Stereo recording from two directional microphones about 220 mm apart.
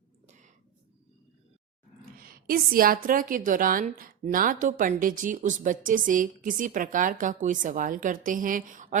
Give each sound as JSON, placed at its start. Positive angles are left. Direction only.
{"t": 2.2, "sound": "a woman's voice", "side_deg": -40}